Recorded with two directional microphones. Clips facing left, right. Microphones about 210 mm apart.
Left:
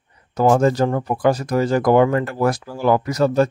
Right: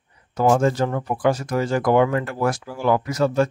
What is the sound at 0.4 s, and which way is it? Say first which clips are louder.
Speech: left 3 dB; 40° left (ahead or behind).